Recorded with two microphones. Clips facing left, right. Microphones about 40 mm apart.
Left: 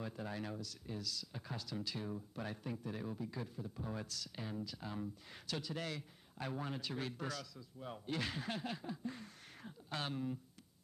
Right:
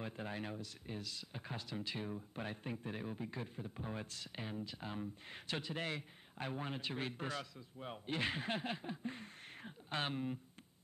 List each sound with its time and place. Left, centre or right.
0.0 s a man's voice: right